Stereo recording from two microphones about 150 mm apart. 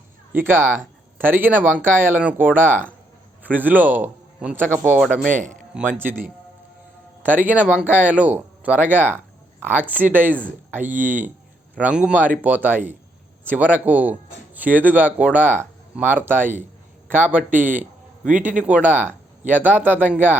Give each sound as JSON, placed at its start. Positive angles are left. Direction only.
{"t": 0.3, "sound": "a man's voice", "side_deg": -15}
{"t": 4.9, "sound": "speech", "side_deg": 0}
{"t": 5.3, "sound": "a man's voice", "side_deg": -55}
{"t": 6.0, "sound": "speech", "side_deg": -15}